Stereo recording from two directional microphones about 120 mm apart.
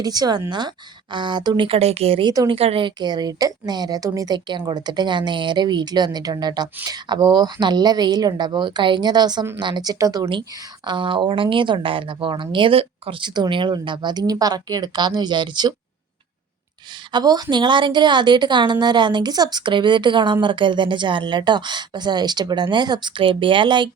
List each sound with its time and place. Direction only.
0.0 s a woman's voice: 35° right (ahead or behind)
17.1 s a woman's voice: 35° right (ahead or behind)